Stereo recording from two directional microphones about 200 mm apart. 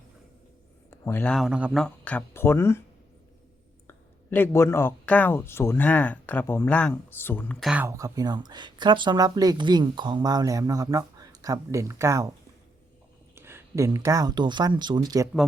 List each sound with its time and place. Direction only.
0.9 s speech: 10° left (ahead or behind)
3.8 s speech: 10° left (ahead or behind)
7.7 s speech: 10° right (ahead or behind)
13.3 s speech: 10° right (ahead or behind)